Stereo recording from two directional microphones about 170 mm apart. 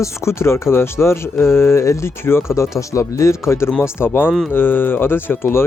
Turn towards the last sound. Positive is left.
turn(degrees=15)  # may be behind; listen again after turning